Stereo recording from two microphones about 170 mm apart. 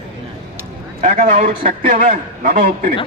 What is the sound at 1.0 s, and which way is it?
A man's voice, 50° right (ahead or behind).